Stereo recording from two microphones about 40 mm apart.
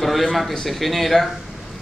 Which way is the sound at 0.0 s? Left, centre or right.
Centre.